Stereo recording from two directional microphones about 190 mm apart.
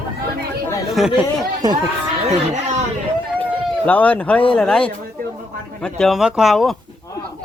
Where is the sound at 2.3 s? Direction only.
35° right (ahead or behind).